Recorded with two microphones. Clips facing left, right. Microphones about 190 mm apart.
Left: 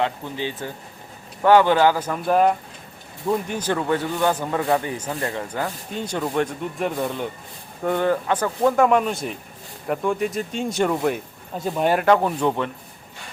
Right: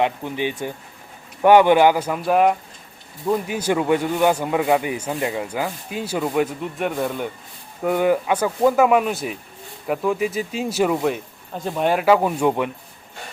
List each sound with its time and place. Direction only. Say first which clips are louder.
0.0 s speech: right 3 dB; 15° right (ahead or behind)